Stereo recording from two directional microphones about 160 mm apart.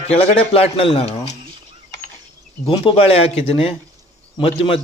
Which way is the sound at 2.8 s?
35° left (ahead or behind).